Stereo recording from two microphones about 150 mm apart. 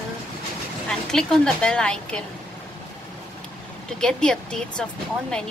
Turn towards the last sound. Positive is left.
turn(degrees=5)  # may be behind; listen again after turning